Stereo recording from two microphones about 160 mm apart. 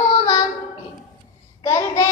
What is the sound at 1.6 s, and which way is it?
Child singing, 20° left (ahead or behind).